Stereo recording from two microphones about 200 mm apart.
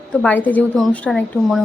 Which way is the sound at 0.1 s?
5° left (ahead or behind).